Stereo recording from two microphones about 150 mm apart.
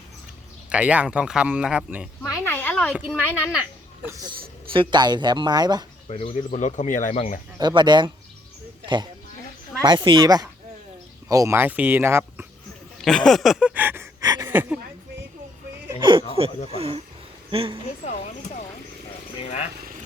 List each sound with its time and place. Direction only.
0.7 s speech: 10° right (ahead or behind)
2.4 s a sound: 15° left (ahead or behind)
3.1 s speech: 10° left (ahead or behind)
4.0 s speech: 25° right (ahead or behind)
6.1 s speech: 45° left (ahead or behind)
7.6 s speech: 30° right (ahead or behind)
9.8 s speech: 30° right (ahead or behind)
13.0 s a sound: 5° left (ahead or behind); by 14.4 s 25° right (ahead or behind)
14.4 s a sound: 10° right (ahead or behind)
16.0 s a sound: 35° right (ahead or behind)
16.6 s speech: 40° right (ahead or behind)
18.0 s speech: 50° left (ahead or behind)